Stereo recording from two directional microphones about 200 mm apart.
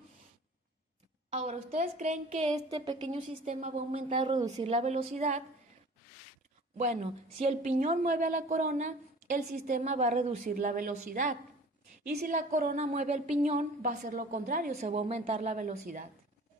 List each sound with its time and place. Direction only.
1.3 s speech: 35° right (ahead or behind)
2.8 s a woman's voice: 25° right (ahead or behind)
3.4 s a woman's voice: 35° right (ahead or behind)
4.6 s speech: 30° right (ahead or behind)
6.8 s speech: 35° right (ahead or behind)